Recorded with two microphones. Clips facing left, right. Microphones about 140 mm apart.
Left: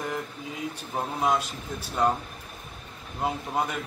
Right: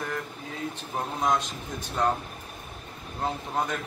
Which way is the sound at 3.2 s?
10° left (ahead or behind).